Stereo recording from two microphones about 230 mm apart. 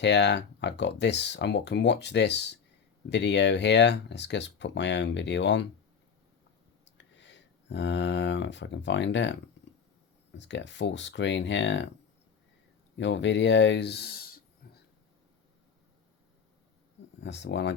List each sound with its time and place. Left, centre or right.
0.0 s speech: left
6.9 s speech: left
13.0 s speech: left
17.2 s speech: left